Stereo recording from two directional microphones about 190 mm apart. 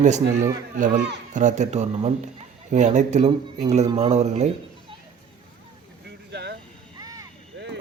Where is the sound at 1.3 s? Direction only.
40° right (ahead or behind).